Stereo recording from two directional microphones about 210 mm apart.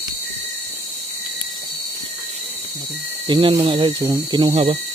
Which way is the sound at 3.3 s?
25° right (ahead or behind).